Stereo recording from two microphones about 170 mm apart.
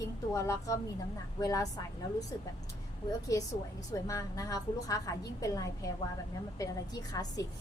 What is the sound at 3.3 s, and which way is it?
A woman's voice, 20° left (ahead or behind).